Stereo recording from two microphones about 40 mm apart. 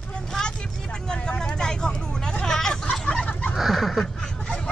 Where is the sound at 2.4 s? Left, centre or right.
Centre.